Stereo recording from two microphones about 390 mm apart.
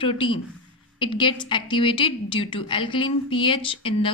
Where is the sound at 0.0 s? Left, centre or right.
Centre.